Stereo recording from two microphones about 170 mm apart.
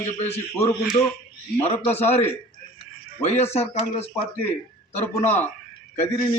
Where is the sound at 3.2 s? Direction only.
40° left (ahead or behind).